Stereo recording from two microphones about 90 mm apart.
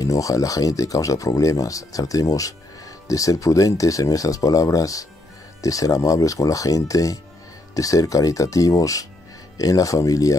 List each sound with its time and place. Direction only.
0.0 s speech: 40° left (ahead or behind)